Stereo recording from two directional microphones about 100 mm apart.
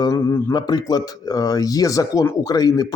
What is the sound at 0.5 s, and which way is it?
Speech, 40° left (ahead or behind).